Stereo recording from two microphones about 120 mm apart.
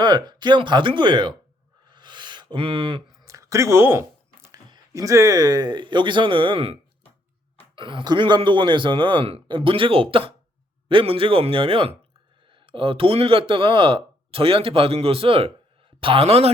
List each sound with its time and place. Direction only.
0.0 s speech: 35° right (ahead or behind)
1.9 s a sound: 40° right (ahead or behind)
3.2 s chewing: 25° right (ahead or behind)
4.7 s speech: 30° right (ahead or behind); by 6.7 s 45° right (ahead or behind)
7.8 s a man's voice: 45° right (ahead or behind); by 16.5 s 60° right (ahead or behind)